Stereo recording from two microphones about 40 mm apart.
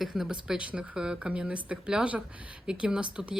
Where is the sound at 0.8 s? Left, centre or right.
Right.